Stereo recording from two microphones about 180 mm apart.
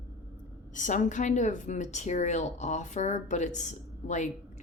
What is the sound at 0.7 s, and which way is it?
A woman's voice, 45° left (ahead or behind).